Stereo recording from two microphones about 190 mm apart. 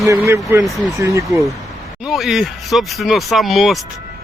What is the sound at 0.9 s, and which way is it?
Speech, 15° right (ahead or behind).